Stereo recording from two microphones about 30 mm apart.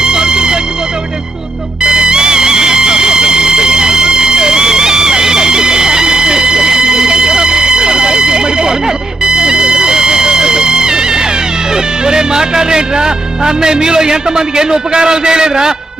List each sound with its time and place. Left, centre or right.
0.0 s vehicle: right
1.8 s music: right